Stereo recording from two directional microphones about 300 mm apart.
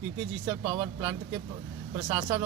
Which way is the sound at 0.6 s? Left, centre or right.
Centre.